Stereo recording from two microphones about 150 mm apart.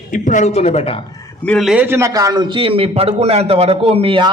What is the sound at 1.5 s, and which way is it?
A man's voice, centre (ahead or behind).